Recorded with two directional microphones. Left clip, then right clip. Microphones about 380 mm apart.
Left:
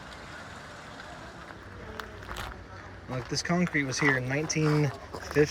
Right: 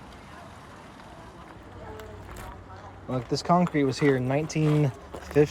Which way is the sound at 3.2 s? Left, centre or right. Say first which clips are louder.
Right 3 dB; right.